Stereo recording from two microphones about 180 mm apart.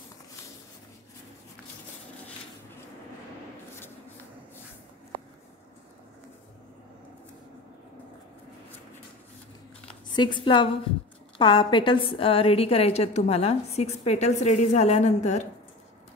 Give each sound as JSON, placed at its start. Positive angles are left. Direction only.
{"t": 10.1, "sound": "a woman's voice", "side_deg": 25}